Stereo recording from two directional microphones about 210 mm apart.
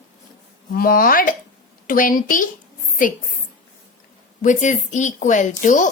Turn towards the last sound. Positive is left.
turn(degrees=35)  # may be behind; listen again after turning